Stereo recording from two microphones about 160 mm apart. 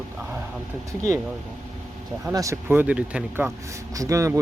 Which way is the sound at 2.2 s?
20° right (ahead or behind).